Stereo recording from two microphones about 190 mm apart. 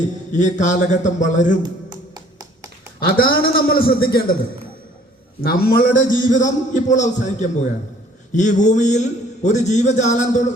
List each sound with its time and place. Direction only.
0.3 s a man's voice: 40° left (ahead or behind)
1.6 s music: 20° right (ahead or behind)
3.0 s a man's voice: 50° left (ahead or behind)
5.4 s a man's voice: 50° left (ahead or behind)